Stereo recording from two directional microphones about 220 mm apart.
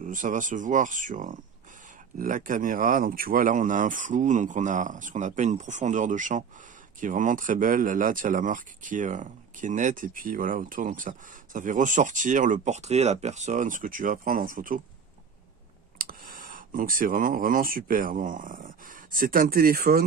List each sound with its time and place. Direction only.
0.0 s speech: 35° right (ahead or behind)
16.0 s speech: 40° right (ahead or behind)